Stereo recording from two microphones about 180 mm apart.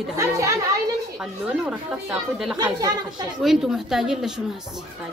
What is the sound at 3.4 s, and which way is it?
Speech, centre (ahead or behind).